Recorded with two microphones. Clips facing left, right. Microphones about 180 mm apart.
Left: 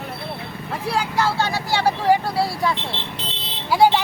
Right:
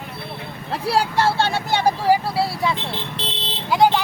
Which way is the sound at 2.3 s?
Centre (ahead or behind).